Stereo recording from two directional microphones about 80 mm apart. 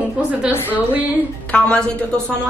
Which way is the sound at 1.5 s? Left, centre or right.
Centre.